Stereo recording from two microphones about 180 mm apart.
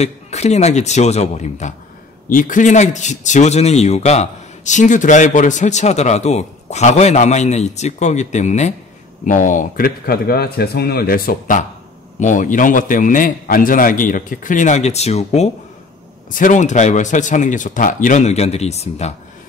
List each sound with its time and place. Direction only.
0.0 s a man's voice: 40° left (ahead or behind)